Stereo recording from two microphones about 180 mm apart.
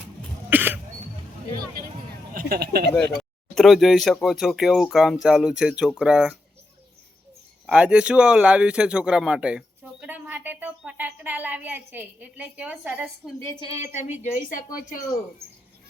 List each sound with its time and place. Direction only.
0.5 s cough: 10° right (ahead or behind)
2.3 s speech: 60° right (ahead or behind)
3.2 s speech: centre (ahead or behind)
7.7 s speech: 5° right (ahead or behind)
13.6 s a woman's voice: 30° left (ahead or behind); by 14.9 s 50° left (ahead or behind)